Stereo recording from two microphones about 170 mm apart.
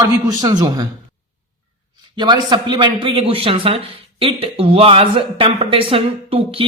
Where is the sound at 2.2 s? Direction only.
25° right (ahead or behind).